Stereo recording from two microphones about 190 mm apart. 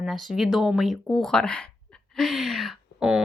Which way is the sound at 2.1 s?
Centre (ahead or behind).